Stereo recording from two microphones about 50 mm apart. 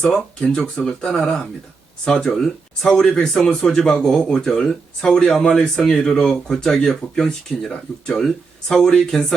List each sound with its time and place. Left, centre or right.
0.0 s speech: centre